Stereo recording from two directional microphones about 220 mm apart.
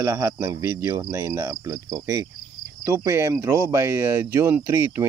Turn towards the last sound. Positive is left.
turn(degrees=-10)  # may be behind; listen again after turning